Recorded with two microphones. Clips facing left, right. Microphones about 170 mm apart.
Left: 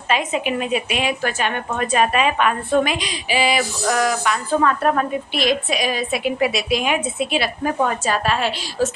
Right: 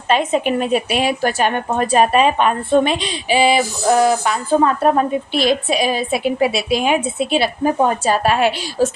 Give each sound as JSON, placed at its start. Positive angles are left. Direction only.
{"t": 0.1, "sound": "a woman's voice", "side_deg": -30}